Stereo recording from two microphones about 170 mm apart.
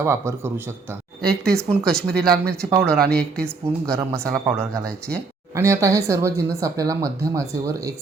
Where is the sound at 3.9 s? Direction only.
15° right (ahead or behind).